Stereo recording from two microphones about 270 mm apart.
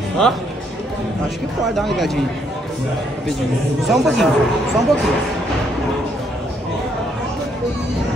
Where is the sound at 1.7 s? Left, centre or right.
Centre.